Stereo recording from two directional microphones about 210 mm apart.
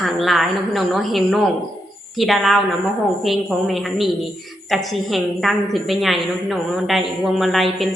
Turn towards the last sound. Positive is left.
turn(degrees=0)  # may be behind; listen again after turning